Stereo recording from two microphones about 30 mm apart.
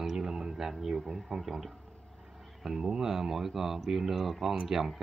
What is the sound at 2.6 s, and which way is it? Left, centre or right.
Speech, right.